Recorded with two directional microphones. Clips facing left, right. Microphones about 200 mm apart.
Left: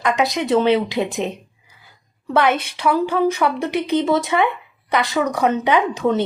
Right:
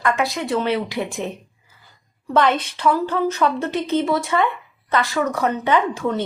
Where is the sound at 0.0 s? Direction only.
20° left (ahead or behind).